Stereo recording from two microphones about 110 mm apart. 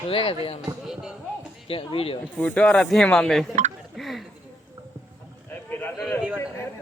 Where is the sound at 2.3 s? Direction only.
5° left (ahead or behind).